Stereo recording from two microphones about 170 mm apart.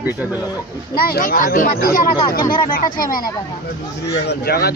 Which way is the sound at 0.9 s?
60° left (ahead or behind).